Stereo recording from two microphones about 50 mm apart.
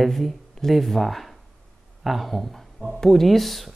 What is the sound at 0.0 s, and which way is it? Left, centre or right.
Speech, centre.